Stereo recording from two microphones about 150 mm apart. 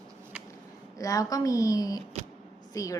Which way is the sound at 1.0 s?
20° left (ahead or behind).